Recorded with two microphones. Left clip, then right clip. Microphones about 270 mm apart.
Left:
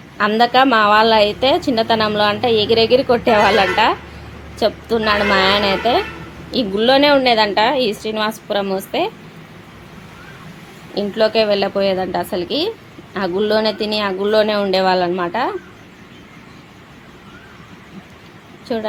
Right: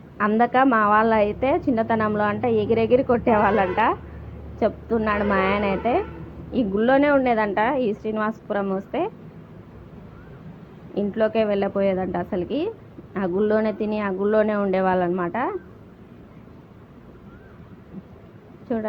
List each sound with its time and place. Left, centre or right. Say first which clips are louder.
0.2 s a woman's voice: left 6 dB; centre
10.9 s speech: left 6 dB; centre
18.7 s speech: left 5 dB; centre